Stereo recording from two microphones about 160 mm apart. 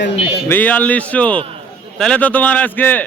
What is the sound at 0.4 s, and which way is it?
A man's voice, 10° left (ahead or behind).